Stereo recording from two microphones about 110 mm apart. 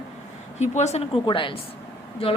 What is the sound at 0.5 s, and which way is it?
Speech, 90° left.